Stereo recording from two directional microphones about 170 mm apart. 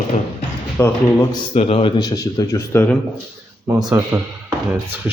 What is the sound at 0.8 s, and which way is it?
Speech, 15° left (ahead or behind).